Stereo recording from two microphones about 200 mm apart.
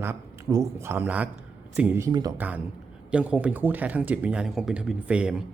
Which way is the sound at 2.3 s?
5° right (ahead or behind).